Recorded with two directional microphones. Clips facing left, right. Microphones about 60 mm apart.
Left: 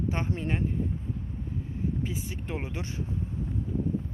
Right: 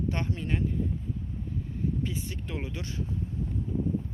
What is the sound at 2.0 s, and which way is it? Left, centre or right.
Speech, left.